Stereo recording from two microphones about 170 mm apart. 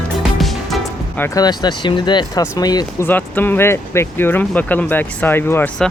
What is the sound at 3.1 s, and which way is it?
Speech, 10° left (ahead or behind).